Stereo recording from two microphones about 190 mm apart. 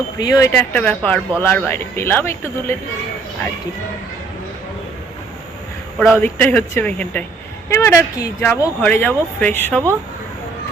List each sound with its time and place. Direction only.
0.2 s speech: 20° left (ahead or behind)
6.0 s speech: 10° left (ahead or behind)